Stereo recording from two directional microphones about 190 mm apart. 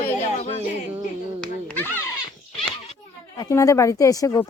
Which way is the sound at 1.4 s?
10° left (ahead or behind).